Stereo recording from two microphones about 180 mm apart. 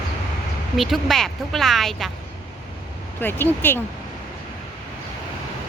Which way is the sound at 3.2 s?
10° left (ahead or behind).